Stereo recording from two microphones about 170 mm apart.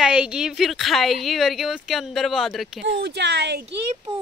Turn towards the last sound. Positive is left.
turn(degrees=-35)  # may be behind; listen again after turning